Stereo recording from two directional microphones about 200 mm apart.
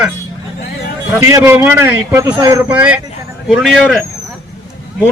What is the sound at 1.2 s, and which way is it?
A man's voice, 15° right (ahead or behind).